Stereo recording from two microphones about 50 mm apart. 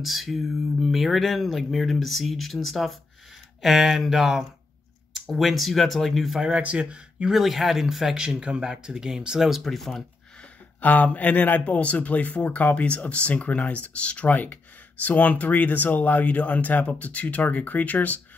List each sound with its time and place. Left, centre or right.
0.0 s speech: centre
6.4 s speech: right
7.2 s speech: centre
9.6 s speech: centre
10.8 s speech: left